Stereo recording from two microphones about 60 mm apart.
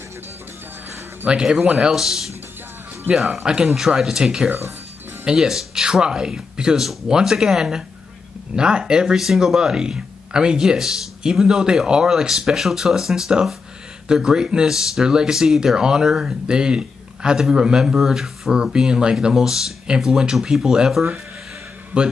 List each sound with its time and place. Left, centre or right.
1.2 s speech: centre
1.9 s speech: centre